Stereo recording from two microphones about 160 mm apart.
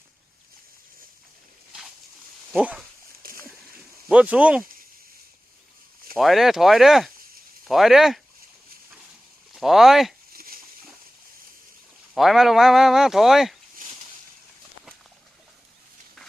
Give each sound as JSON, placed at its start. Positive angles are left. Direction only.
{"t": 2.5, "sound": "speech", "side_deg": -5}
{"t": 3.2, "sound": "splash", "side_deg": -65}
{"t": 4.1, "sound": "speech", "side_deg": -5}
{"t": 6.1, "sound": "speech", "side_deg": 0}
{"t": 9.6, "sound": "speech", "side_deg": 0}
{"t": 10.3, "sound": "a sound", "side_deg": -65}
{"t": 12.1, "sound": "speech", "side_deg": 0}